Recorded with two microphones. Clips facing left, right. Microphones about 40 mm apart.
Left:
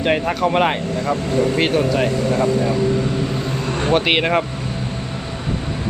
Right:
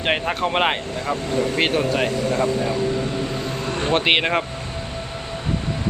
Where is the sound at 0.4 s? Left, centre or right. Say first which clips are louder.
Left 3 dB; centre.